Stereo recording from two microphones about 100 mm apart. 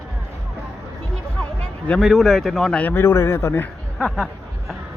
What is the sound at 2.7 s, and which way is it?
Speech, 20° left (ahead or behind).